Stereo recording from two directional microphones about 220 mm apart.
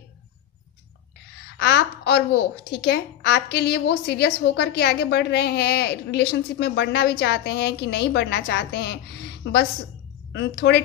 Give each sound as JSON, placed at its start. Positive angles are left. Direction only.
{"t": 1.6, "sound": "a woman's voice", "side_deg": 50}